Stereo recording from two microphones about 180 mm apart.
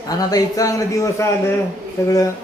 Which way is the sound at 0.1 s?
20° left (ahead or behind).